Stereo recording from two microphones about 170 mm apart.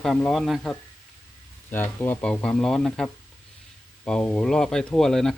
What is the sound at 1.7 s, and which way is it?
Speech, 10° left (ahead or behind).